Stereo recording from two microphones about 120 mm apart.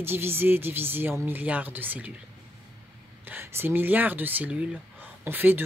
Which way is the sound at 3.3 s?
15° right (ahead or behind).